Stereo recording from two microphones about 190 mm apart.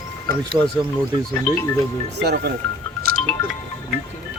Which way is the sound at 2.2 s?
60° right (ahead or behind).